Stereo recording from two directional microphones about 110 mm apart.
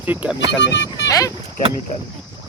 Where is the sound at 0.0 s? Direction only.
15° right (ahead or behind).